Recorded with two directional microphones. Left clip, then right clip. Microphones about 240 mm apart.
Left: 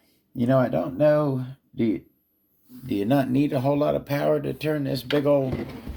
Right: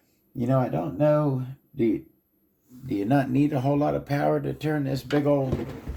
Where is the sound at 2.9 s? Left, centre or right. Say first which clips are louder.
Left 1 dB; left.